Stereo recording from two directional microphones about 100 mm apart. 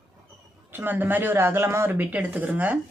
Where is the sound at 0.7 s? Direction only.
20° right (ahead or behind).